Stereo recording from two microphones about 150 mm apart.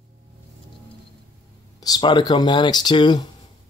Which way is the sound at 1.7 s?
25° left (ahead or behind).